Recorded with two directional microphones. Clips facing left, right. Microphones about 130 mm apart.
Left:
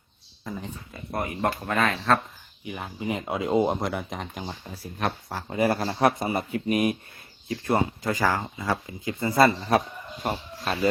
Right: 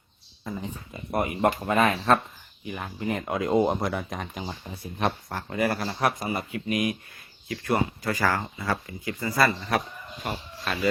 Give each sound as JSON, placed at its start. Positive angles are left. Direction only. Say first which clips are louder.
{"t": 0.4, "sound": "speech", "louder": "right 1 dB", "side_deg": 0}
{"t": 0.7, "sound": "speech", "louder": "right 3 dB", "side_deg": -20}
{"t": 2.6, "sound": "speech", "louder": "even", "side_deg": 10}
{"t": 5.5, "sound": "a man's voice", "louder": "left 3 dB", "side_deg": 25}